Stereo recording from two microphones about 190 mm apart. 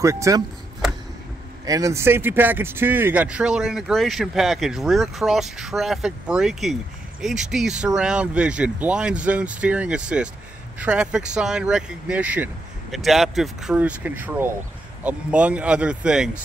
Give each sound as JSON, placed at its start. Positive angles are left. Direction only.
{"t": 0.0, "sound": "speech", "side_deg": -15}
{"t": 1.7, "sound": "speech", "side_deg": -15}